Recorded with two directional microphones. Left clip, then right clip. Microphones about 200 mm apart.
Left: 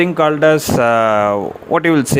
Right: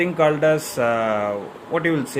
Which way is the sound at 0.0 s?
40° left (ahead or behind).